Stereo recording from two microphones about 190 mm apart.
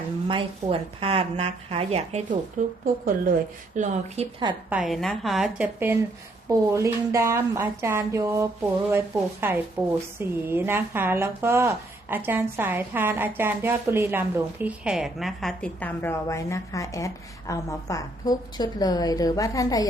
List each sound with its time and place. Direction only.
0.3 s speech: 30° right (ahead or behind)
3.8 s speech: 35° right (ahead or behind)
4.7 s a woman's voice: centre (ahead or behind); by 19.9 s 20° left (ahead or behind)